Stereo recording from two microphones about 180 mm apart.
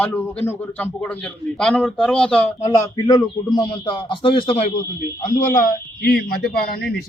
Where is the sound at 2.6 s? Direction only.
15° left (ahead or behind); by 4.7 s 35° left (ahead or behind).